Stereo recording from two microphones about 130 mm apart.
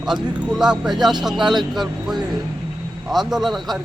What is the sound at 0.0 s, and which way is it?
A man's voice, 5° right (ahead or behind).